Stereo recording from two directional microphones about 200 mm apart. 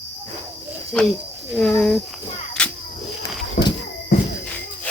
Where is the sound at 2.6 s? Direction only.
5° left (ahead or behind).